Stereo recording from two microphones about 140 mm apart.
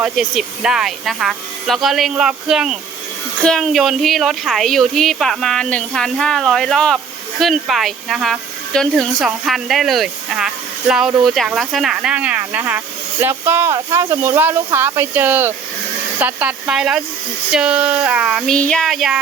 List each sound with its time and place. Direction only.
0.0 s a woman's voice: 5° right (ahead or behind)
13.7 s speech: 30° right (ahead or behind); by 18.5 s 5° right (ahead or behind)
18.5 s a woman's voice: 5° left (ahead or behind)